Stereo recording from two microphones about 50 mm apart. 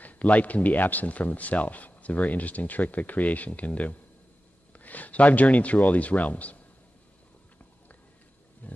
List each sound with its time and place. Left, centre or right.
0.0 s speech: left
8.6 s roaring cats: left